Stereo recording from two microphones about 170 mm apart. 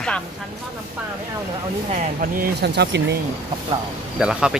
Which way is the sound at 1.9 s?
50° right (ahead or behind).